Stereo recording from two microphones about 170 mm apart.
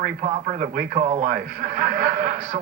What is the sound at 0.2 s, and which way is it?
A man's voice, 45° right (ahead or behind).